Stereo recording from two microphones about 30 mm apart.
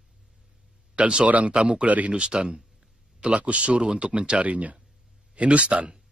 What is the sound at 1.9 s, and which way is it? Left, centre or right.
Speech, right.